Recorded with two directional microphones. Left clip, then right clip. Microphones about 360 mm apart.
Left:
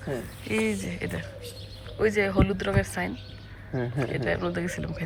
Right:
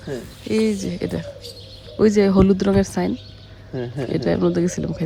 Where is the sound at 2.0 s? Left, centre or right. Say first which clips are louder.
Right 8 dB; centre.